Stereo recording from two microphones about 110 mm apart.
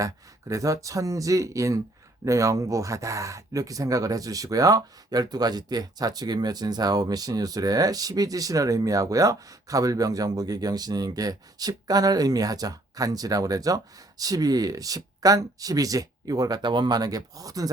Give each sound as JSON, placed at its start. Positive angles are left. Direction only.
{"t": 0.0, "sound": "speech", "side_deg": -30}